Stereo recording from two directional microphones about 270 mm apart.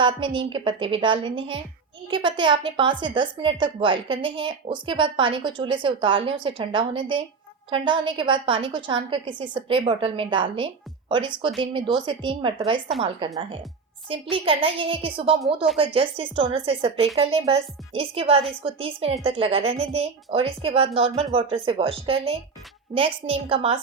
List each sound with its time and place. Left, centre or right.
0.0 s a woman's voice: centre